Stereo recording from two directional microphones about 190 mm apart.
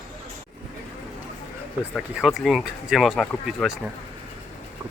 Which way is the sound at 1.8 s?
5° right (ahead or behind).